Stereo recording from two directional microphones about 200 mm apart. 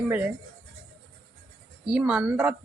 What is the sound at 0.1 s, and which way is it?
Speech, 10° right (ahead or behind).